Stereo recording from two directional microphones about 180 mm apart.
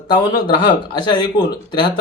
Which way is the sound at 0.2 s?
25° left (ahead or behind).